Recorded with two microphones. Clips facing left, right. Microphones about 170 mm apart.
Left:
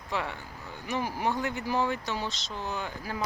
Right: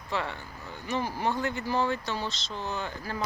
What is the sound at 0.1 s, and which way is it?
Speech, 10° left (ahead or behind).